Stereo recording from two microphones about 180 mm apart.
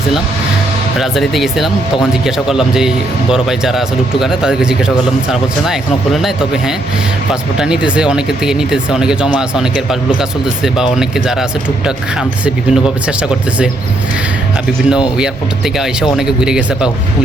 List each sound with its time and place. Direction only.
0.9 s speech: centre (ahead or behind)
6.2 s speech: 5° right (ahead or behind)
12.5 s speech: 5° right (ahead or behind)
14.8 s speech: 5° right (ahead or behind)